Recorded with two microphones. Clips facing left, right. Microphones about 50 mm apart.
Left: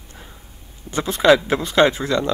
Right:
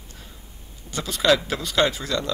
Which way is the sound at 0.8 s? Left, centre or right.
Left.